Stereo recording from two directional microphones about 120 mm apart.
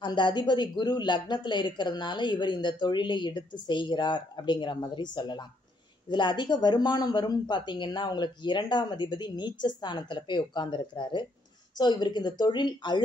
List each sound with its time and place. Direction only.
0.0 s speech: 40° left (ahead or behind)